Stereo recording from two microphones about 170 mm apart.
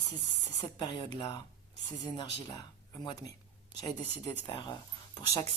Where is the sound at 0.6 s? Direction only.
25° left (ahead or behind).